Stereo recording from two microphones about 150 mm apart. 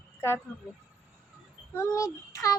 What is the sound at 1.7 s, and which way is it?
Child singing, 20° left (ahead or behind).